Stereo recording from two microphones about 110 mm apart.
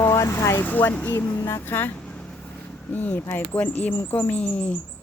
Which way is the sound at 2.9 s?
15° left (ahead or behind).